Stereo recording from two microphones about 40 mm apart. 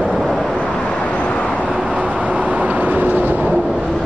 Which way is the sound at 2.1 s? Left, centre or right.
Right.